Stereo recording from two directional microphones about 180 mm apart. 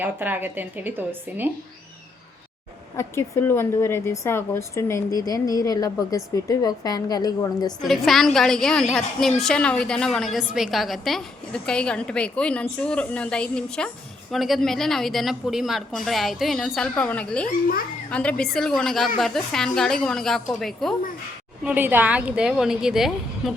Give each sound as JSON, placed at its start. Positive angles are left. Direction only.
{"t": 0.0, "sound": "speech", "side_deg": -10}
{"t": 3.0, "sound": "a woman's voice", "side_deg": 15}
{"t": 7.8, "sound": "a woman's voice", "side_deg": 0}